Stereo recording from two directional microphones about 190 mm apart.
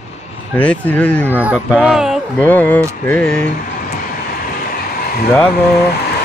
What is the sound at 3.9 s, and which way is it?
Vehicle, 50° left (ahead or behind).